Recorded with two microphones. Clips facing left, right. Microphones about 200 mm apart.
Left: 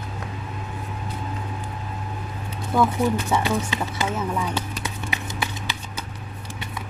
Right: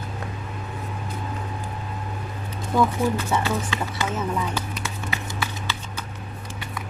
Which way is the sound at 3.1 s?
15° left (ahead or behind).